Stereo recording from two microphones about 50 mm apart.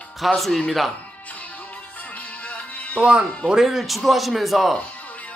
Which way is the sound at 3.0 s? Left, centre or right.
Right.